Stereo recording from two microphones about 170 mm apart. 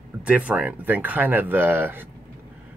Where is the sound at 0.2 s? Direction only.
10° right (ahead or behind).